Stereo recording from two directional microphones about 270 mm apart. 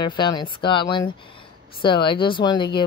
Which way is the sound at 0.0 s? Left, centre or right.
Centre.